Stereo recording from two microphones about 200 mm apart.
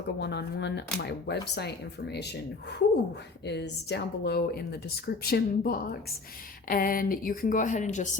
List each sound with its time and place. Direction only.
0.2 s speech: 55° left (ahead or behind); by 8.1 s 40° left (ahead or behind)